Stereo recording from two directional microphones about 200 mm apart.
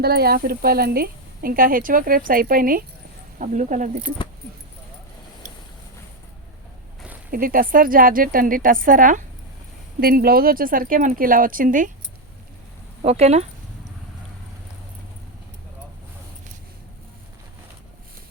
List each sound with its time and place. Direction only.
0.0 s speech: 50° right (ahead or behind)
7.3 s speech: 45° right (ahead or behind)
13.0 s speech: 35° right (ahead or behind)